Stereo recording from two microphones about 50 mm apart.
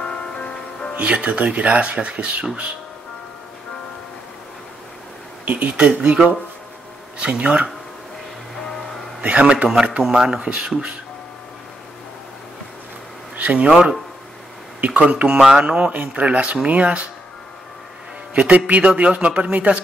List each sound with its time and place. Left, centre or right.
0.0 s music: centre
0.9 s speech: right
5.4 s speech: right
9.2 s speech: right
10.0 s speech: centre
13.4 s a sound: right
13.7 s speech: centre
15.9 s speech: right
18.3 s speech: right